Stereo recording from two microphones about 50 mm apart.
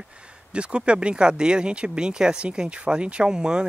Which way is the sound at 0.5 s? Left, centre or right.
Right.